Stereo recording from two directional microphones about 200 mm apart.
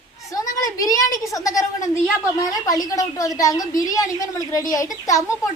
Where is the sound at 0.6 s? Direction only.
15° left (ahead or behind).